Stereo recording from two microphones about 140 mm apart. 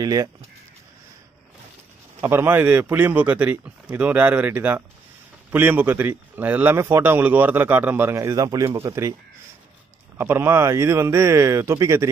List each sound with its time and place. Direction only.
0.0 s speech: 25° right (ahead or behind)
2.2 s a man's voice: 15° right (ahead or behind)
10.1 s speech: 15° right (ahead or behind)